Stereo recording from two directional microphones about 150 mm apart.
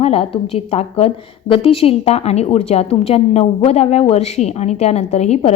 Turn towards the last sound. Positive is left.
turn(degrees=45)  # may be behind; listen again after turning